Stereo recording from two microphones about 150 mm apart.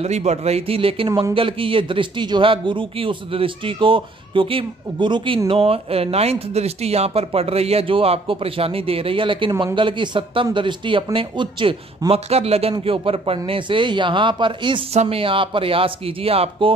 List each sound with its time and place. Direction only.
0.0 s a man's voice: 45° right (ahead or behind)